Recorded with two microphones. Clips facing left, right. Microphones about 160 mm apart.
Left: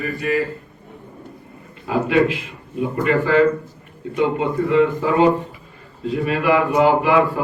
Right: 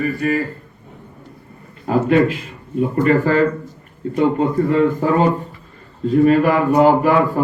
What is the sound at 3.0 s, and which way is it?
A man's voice, 40° right (ahead or behind).